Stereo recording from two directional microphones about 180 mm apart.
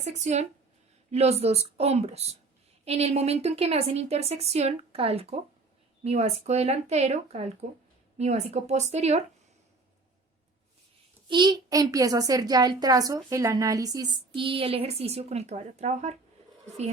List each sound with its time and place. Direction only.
0.0 s a woman's voice: 40° right (ahead or behind)
11.3 s a woman's voice: 25° right (ahead or behind)